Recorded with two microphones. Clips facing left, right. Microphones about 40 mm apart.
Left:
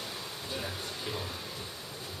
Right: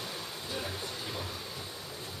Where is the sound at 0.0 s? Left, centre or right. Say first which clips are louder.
Even; centre.